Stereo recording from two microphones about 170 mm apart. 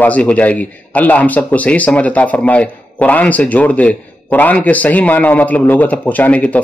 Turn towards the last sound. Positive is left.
turn(degrees=10)  # may be behind; listen again after turning